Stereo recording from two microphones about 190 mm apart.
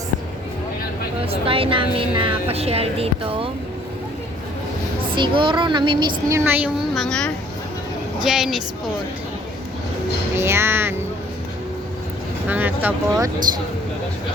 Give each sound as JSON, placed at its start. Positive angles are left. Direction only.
{"t": 1.2, "sound": "speech", "side_deg": -30}
{"t": 5.1, "sound": "a woman's voice", "side_deg": -25}
{"t": 10.3, "sound": "speech", "side_deg": -15}
{"t": 12.5, "sound": "speech", "side_deg": -10}